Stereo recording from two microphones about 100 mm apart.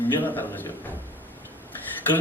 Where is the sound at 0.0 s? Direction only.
20° left (ahead or behind).